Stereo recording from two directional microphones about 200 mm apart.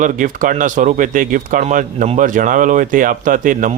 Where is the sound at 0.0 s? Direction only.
40° right (ahead or behind).